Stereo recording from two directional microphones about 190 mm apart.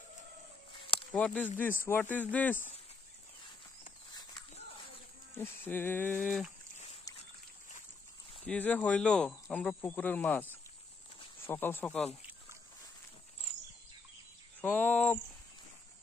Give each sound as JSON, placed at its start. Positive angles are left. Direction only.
{"t": 0.7, "sound": "a sound", "side_deg": 25}
{"t": 1.1, "sound": "speech", "side_deg": 5}
{"t": 4.1, "sound": "a sound", "side_deg": 20}
{"t": 5.3, "sound": "speech", "side_deg": 10}
{"t": 8.5, "sound": "speech", "side_deg": 10}
{"t": 11.4, "sound": "speech", "side_deg": 10}
{"t": 14.6, "sound": "speech", "side_deg": 10}